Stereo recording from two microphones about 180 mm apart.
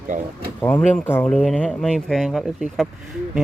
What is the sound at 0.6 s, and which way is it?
Speech, 10° left (ahead or behind).